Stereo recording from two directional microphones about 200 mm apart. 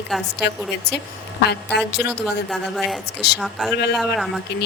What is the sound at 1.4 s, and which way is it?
Speech, 55° left (ahead or behind).